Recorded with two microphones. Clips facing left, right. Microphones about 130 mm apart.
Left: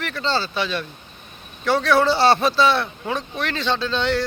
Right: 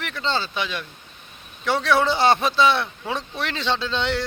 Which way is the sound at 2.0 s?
15° right (ahead or behind).